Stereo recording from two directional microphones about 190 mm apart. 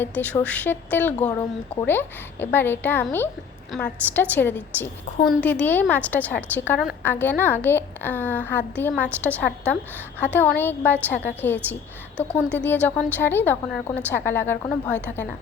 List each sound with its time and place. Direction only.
0.0 s a woman's voice: 10° left (ahead or behind)
5.1 s a woman's voice: 35° left (ahead or behind)
5.4 s a woman's voice: 5° left (ahead or behind)